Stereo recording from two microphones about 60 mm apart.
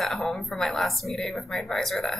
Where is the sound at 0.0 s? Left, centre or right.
Centre.